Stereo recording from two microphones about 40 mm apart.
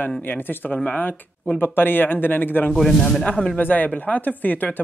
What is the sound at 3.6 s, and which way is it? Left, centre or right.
Speech, left.